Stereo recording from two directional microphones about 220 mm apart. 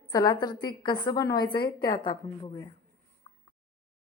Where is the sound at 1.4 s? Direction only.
45° left (ahead or behind).